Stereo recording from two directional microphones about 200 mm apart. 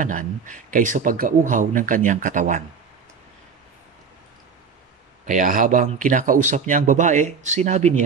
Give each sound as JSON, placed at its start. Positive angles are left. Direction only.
{"t": 0.0, "sound": "speech", "side_deg": -40}
{"t": 5.2, "sound": "speech", "side_deg": -40}